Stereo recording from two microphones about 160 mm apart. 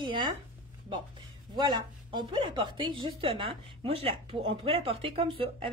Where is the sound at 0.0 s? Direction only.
30° right (ahead or behind).